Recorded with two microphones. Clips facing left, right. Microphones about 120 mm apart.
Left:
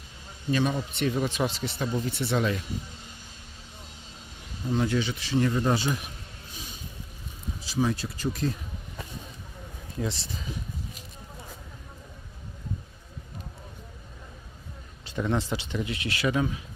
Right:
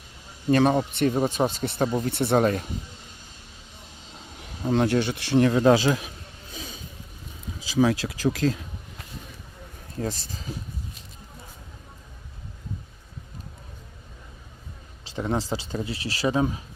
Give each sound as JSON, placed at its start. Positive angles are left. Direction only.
{"t": 0.5, "sound": "speech", "side_deg": -50}
{"t": 4.6, "sound": "speech", "side_deg": -65}
{"t": 7.6, "sound": "speech", "side_deg": -90}
{"t": 10.0, "sound": "speech", "side_deg": -45}
{"t": 15.1, "sound": "speech", "side_deg": -30}